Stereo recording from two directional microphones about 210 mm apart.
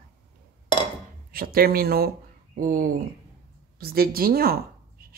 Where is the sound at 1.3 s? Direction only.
45° right (ahead or behind).